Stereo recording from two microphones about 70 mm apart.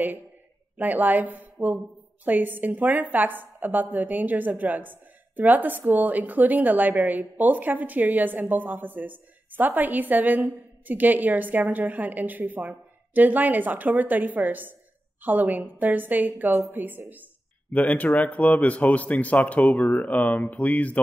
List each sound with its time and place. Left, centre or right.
0.7 s a woman's voice: right
17.7 s speech: left